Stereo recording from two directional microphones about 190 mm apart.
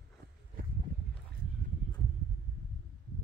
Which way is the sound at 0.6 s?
45° right (ahead or behind).